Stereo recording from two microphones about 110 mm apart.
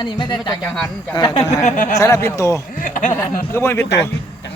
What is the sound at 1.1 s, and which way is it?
Speech, 40° left (ahead or behind).